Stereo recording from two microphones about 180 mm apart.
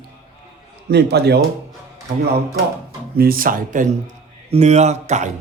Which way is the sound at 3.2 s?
55° right (ahead or behind).